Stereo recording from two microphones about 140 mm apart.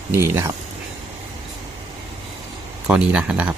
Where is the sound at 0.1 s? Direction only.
20° right (ahead or behind).